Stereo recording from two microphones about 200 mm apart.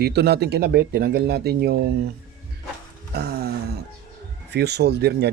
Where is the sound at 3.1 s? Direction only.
50° right (ahead or behind).